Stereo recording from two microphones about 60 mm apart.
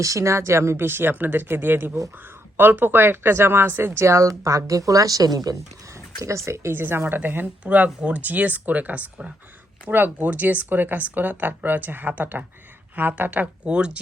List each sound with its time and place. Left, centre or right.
0.0 s speech: right
6.2 s speech: right
7.6 s speech: right